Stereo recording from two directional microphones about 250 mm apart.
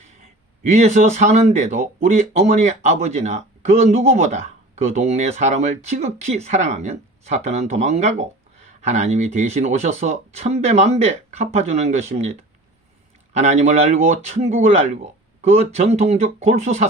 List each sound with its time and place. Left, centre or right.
0.6 s speech: right